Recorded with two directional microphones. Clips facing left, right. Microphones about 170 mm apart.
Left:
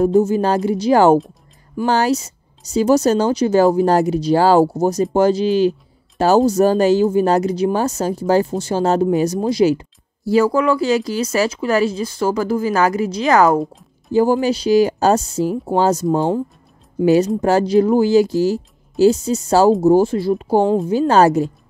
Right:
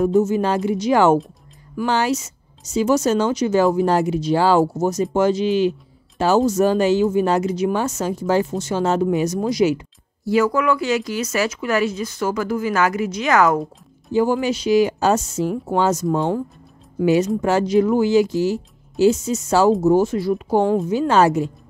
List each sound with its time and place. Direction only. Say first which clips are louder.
0.2 s speech: left 2 dB; 35° left (ahead or behind)